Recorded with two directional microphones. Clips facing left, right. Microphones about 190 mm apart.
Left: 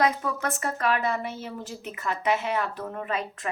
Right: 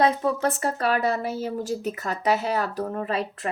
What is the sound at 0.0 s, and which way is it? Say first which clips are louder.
Speech: right 4 dB; 30° right (ahead or behind).